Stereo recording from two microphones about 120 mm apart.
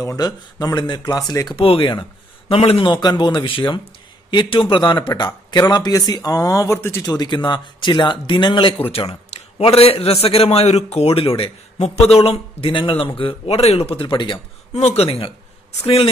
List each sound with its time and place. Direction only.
0.2 s speech: 35° left (ahead or behind)
1.6 s speech: 50° left (ahead or behind)
2.9 s speech: 35° left (ahead or behind); by 7.1 s 20° left (ahead or behind)
7.1 s a man's voice: 35° left (ahead or behind)
14.7 s speech: 65° left (ahead or behind)